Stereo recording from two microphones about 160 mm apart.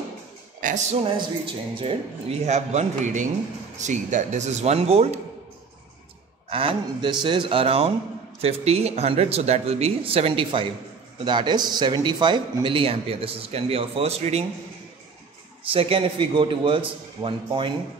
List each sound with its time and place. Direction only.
0.6 s speech: 55° right (ahead or behind)
1.1 s a man's voice: 35° right (ahead or behind)
6.5 s a man's voice: 35° right (ahead or behind)
15.7 s a man's voice: 35° right (ahead or behind)